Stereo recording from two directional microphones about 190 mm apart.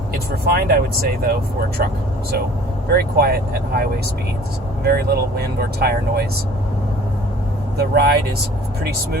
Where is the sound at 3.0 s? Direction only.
55° right (ahead or behind).